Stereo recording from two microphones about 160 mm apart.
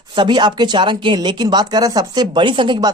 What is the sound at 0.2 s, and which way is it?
Speech, 30° right (ahead or behind).